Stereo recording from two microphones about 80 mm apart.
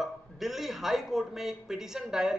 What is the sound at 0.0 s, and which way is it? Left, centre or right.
Speech, centre.